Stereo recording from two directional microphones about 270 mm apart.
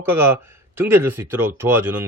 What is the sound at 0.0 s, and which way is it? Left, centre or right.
Speech, centre.